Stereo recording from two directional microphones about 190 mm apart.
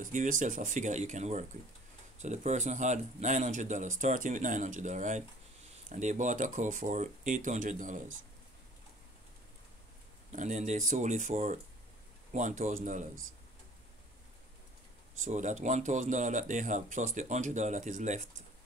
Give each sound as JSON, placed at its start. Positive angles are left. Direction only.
{"t": 0.0, "sound": "speech", "side_deg": -40}
{"t": 10.3, "sound": "speech", "side_deg": -40}
{"t": 15.2, "sound": "speech", "side_deg": -40}